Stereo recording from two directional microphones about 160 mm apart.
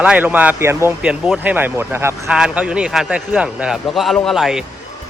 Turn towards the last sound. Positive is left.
turn(degrees=0)  # may be behind; listen again after turning